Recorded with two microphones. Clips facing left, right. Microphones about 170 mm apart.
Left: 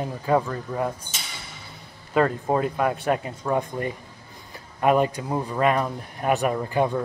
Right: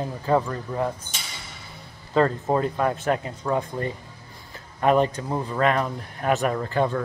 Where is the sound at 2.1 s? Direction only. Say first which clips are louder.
Even; 10° left (ahead or behind).